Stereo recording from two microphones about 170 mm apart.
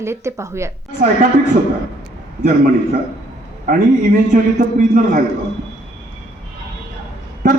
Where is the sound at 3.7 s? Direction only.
50° right (ahead or behind).